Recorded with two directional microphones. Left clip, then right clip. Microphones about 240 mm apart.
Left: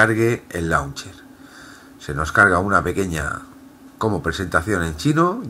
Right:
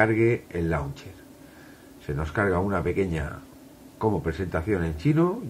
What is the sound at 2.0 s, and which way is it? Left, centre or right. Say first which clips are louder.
Speech: left 11 dB; centre.